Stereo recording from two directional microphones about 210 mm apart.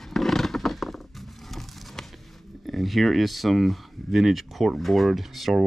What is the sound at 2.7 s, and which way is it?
Speech, centre (ahead or behind).